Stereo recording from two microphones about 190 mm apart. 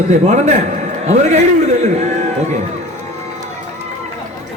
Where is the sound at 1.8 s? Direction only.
35° right (ahead or behind).